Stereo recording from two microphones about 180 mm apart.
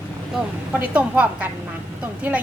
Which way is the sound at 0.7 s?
10° right (ahead or behind).